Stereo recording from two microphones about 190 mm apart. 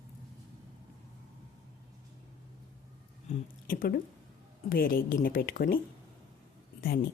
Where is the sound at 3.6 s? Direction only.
50° left (ahead or behind).